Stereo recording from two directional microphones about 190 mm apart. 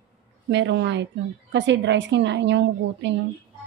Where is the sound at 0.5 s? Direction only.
70° right (ahead or behind).